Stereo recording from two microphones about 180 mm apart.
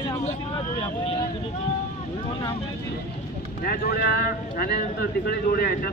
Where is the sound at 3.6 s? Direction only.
60° left (ahead or behind).